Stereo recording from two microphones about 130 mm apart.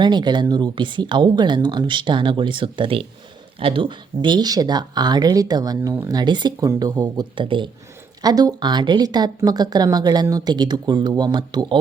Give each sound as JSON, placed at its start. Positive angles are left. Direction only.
{"t": 0.0, "sound": "speech", "side_deg": -35}